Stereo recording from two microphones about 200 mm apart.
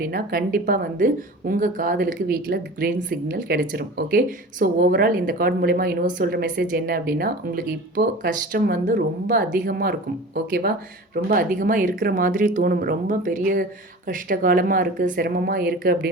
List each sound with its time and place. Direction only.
0.0 s a woman's voice: 45° right (ahead or behind)